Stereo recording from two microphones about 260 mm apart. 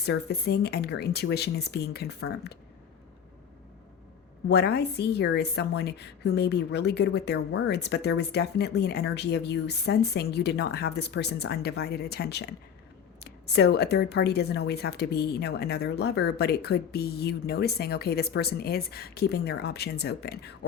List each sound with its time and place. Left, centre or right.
0.0 s a woman's voice: left
4.4 s a woman's voice: left